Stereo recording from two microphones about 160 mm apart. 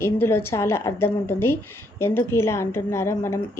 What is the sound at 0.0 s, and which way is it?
Speech, 15° left (ahead or behind).